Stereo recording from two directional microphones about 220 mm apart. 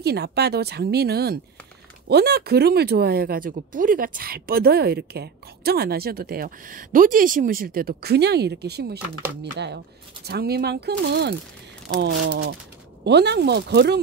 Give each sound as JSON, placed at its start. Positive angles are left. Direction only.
{"t": 0.0, "sound": "speech", "side_deg": -45}